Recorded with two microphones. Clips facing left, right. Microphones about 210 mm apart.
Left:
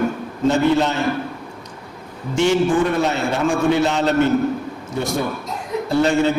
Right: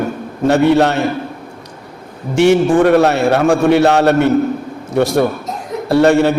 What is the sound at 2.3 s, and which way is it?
A man's voice, 65° right (ahead or behind).